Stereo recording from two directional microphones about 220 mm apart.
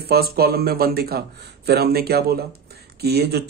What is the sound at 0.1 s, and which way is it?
Speech, 45° right (ahead or behind).